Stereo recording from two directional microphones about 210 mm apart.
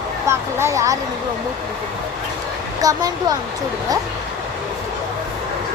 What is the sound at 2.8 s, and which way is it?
Speech, 15° right (ahead or behind).